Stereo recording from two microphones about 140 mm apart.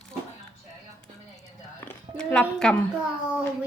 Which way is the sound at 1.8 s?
10° left (ahead or behind).